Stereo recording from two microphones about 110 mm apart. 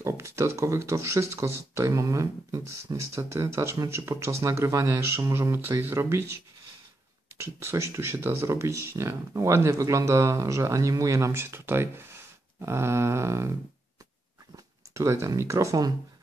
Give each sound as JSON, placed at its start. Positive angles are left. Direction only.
{"t": 0.0, "sound": "speech", "side_deg": -25}
{"t": 15.0, "sound": "speech", "side_deg": -30}